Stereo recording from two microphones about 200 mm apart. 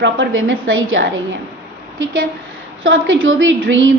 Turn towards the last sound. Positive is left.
turn(degrees=-70)  # may be behind; listen again after turning